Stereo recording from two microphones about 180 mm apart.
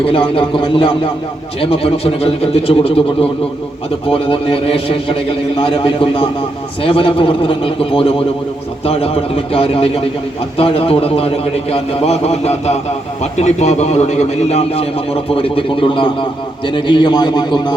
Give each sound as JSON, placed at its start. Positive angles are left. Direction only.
{"t": 0.0, "sound": "a man's voice", "side_deg": 30}
{"t": 4.1, "sound": "a man's voice", "side_deg": 30}